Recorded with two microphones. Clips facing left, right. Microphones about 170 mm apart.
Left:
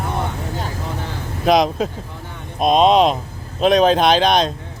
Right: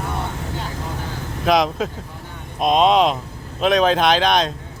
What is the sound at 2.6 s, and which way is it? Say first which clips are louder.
Speech: left 2 dB; 25° left (ahead or behind).